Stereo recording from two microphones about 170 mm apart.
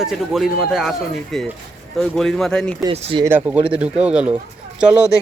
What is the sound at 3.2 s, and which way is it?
Speech, 15° right (ahead or behind).